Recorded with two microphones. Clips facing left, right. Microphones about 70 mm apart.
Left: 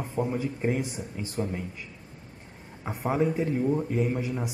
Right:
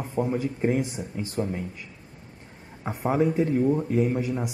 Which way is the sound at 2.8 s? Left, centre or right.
Centre.